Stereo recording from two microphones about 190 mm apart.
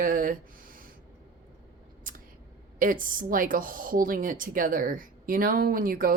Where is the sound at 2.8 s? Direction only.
45° right (ahead or behind).